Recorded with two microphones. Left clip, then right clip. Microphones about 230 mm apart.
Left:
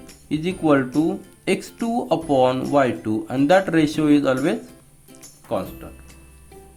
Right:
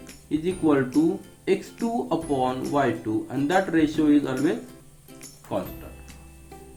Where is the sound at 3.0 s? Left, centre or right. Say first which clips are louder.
Left 5 dB; left.